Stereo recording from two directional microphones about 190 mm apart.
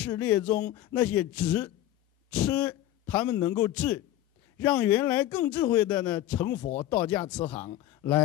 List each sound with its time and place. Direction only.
0.0 s a man's voice: 10° left (ahead or behind)
7.7 s a man's voice: 20° left (ahead or behind)